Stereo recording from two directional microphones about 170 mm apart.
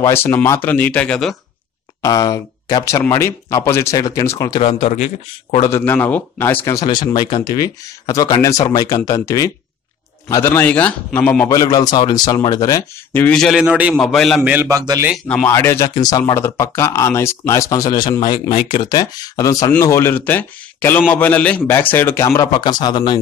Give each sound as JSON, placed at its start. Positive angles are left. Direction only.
{"t": 0.0, "sound": "a man's voice", "side_deg": 15}
{"t": 2.0, "sound": "speech", "side_deg": 20}
{"t": 4.6, "sound": "speech", "side_deg": 35}
{"t": 5.6, "sound": "a man's voice", "side_deg": 15}
{"t": 14.5, "sound": "a man's voice", "side_deg": -15}
{"t": 15.2, "sound": "a man's voice", "side_deg": 10}